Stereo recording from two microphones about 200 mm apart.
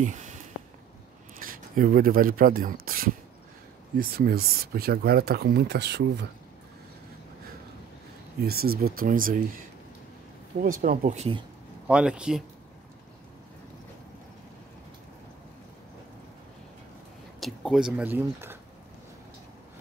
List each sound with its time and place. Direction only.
0.0 s a sound: 35° right (ahead or behind)
1.4 s speech: 45° right (ahead or behind)
8.4 s speech: 50° right (ahead or behind)
10.6 s speech: 45° right (ahead or behind)
11.9 s speech: 5° right (ahead or behind)
17.4 s speech: centre (ahead or behind)